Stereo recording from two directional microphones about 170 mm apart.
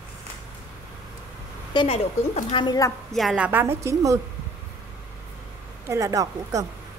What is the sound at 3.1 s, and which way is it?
A woman's voice, 5° right (ahead or behind).